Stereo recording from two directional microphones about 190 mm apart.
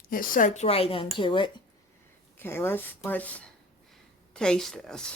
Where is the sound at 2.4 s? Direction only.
10° left (ahead or behind).